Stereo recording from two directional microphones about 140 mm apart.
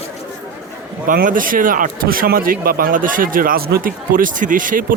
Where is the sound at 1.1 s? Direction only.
75° right (ahead or behind).